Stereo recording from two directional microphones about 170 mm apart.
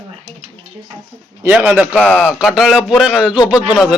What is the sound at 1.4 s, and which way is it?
Speech, 10° right (ahead or behind).